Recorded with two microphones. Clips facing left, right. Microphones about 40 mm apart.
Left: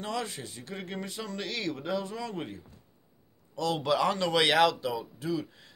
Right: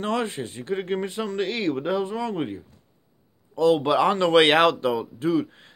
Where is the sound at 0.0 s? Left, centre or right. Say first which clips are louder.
Right 8 dB; right.